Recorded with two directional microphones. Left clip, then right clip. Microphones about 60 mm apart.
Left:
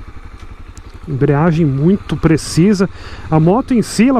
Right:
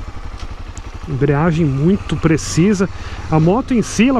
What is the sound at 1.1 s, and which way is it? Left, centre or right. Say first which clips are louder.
Speech: left 2 dB; left.